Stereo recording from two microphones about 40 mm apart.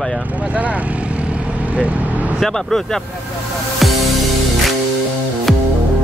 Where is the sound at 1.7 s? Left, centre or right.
Right.